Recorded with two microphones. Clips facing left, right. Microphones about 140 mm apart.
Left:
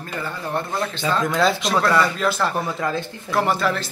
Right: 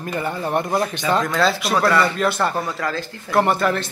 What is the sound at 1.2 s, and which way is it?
Speech, 20° left (ahead or behind).